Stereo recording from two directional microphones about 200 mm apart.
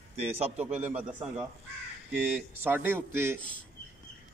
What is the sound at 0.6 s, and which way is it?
Speech, 10° right (ahead or behind).